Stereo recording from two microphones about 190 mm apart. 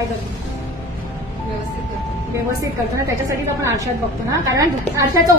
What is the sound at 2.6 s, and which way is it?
A woman's voice, 15° right (ahead or behind).